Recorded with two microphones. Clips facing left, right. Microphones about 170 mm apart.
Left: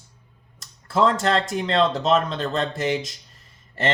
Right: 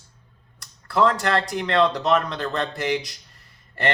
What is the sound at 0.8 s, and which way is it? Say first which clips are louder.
Speech: left 1 dB; 20° left (ahead or behind).